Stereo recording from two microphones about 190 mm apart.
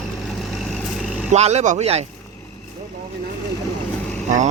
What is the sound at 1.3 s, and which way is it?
Speech, 35° right (ahead or behind).